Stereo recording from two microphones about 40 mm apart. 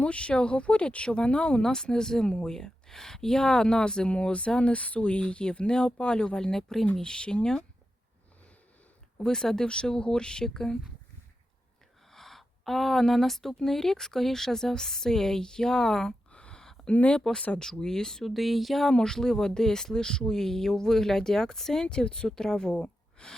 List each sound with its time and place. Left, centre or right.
0.0 s speech: left
6.5 s speech: centre
7.0 s speech: left
9.2 s speech: centre
12.1 s speech: centre
16.3 s a sound: left
16.9 s speech: left
17.6 s speech: centre
18.3 s a sound: centre
18.9 s speech: centre
23.2 s gasp: centre